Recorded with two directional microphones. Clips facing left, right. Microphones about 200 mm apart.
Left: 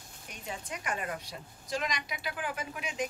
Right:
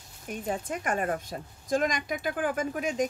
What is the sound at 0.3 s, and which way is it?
A woman's voice, 50° right (ahead or behind).